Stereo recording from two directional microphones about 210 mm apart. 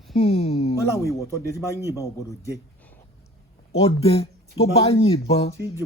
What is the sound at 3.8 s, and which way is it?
Speech, 30° left (ahead or behind).